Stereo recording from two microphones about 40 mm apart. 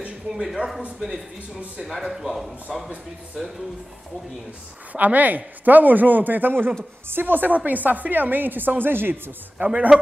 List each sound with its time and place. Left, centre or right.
0.3 s speech: centre
1.8 s speech: centre
4.9 s a woman's voice: right